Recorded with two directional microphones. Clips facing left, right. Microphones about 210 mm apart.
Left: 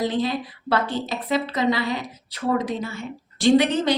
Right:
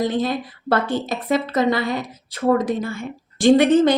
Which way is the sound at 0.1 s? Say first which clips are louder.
Right 2 dB; 50° right (ahead or behind).